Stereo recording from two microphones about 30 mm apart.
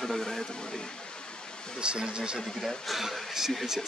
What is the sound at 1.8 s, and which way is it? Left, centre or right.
Speech, right.